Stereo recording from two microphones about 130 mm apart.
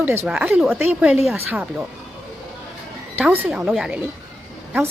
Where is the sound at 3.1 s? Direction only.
15° right (ahead or behind).